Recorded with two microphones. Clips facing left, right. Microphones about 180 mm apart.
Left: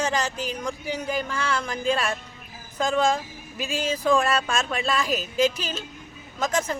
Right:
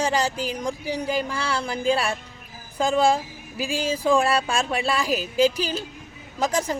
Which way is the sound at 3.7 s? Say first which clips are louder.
Right 1 dB; 30° right (ahead or behind).